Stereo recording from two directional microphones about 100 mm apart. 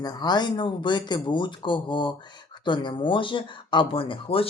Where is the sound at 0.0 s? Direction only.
45° left (ahead or behind).